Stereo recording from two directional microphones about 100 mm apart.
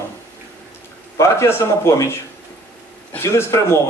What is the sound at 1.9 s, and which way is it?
Speech, 25° left (ahead or behind).